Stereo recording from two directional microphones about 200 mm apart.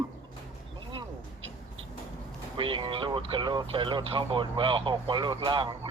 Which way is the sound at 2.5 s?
25° right (ahead or behind).